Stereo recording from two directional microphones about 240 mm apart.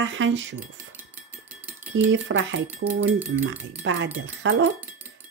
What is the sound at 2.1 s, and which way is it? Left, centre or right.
Speech, right.